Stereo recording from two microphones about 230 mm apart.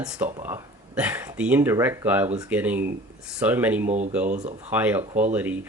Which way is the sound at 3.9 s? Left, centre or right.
Right.